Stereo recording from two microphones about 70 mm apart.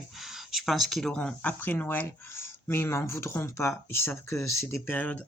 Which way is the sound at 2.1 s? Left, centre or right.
Left.